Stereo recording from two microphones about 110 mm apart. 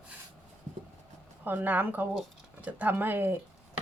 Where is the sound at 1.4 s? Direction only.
15° right (ahead or behind).